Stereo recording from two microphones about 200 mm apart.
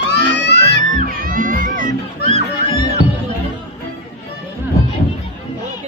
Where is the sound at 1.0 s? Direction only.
40° right (ahead or behind).